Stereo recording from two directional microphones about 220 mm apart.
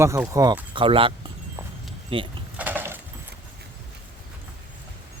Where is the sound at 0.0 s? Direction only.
15° right (ahead or behind).